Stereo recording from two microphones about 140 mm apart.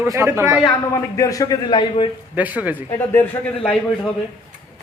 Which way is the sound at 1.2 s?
25° left (ahead or behind).